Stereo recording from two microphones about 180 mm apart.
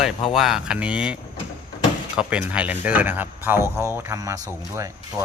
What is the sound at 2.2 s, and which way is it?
Speech, 5° right (ahead or behind).